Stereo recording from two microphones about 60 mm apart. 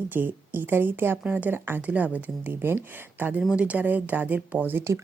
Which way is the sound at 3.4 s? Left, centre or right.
Centre.